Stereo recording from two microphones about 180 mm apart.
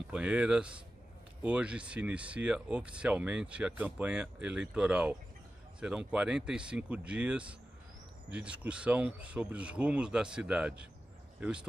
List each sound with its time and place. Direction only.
0.1 s speech: 5° right (ahead or behind)